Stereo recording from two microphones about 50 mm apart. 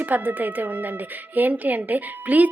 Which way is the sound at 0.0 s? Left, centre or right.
Right.